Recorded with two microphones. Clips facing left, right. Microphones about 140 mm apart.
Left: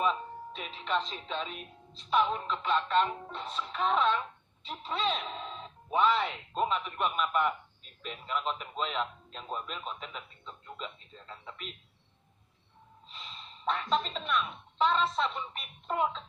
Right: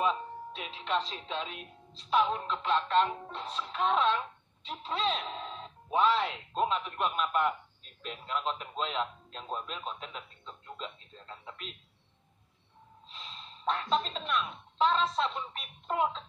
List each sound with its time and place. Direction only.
0.0 s speech: centre (ahead or behind)
13.1 s speech: centre (ahead or behind)